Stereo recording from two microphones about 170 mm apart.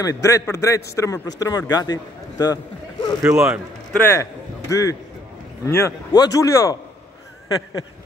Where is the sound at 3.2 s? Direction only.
10° right (ahead or behind).